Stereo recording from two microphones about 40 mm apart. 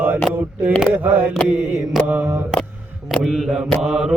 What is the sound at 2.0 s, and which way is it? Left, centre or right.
Mantra, right.